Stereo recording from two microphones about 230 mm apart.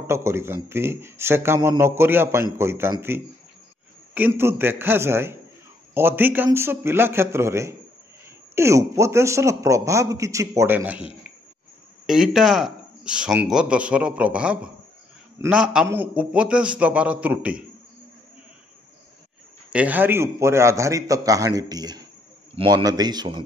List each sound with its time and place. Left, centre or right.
0.0 s a man's voice: centre
12.1 s a man's voice: centre
19.7 s a man's voice: centre